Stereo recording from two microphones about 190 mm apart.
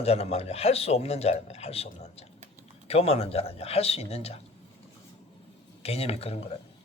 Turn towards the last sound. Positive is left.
turn(degrees=30)  # may be behind; listen again after turning